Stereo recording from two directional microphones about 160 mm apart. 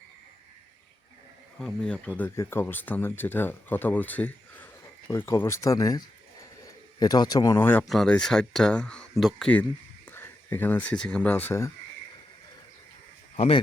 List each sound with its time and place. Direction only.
1.5 s speech: 5° left (ahead or behind); by 6.0 s 25° left (ahead or behind)
7.0 s speech: 25° left (ahead or behind)
7.9 s speech: centre (ahead or behind)
13.3 s speech: 40° left (ahead or behind)